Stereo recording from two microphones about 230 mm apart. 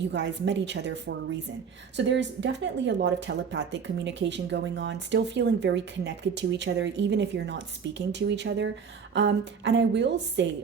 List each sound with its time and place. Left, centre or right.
0.1 s speech: right